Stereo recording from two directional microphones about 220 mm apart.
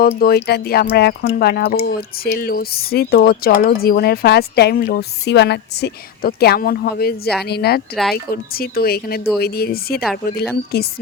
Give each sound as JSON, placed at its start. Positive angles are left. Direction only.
{"t": 0.2, "sound": "speech", "side_deg": 45}
{"t": 10.0, "sound": "speech", "side_deg": -5}
{"t": 10.7, "sound": "speech", "side_deg": 45}